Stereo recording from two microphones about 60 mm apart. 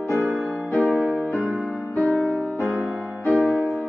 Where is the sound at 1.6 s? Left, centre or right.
Left.